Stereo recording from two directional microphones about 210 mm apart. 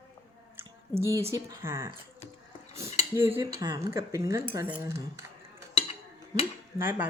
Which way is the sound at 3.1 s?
10° right (ahead or behind).